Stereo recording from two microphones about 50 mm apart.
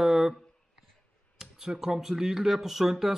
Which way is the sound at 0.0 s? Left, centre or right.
Centre.